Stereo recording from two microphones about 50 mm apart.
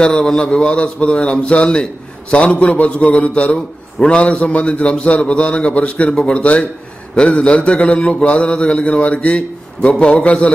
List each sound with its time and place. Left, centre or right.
0.0 s a man's voice: centre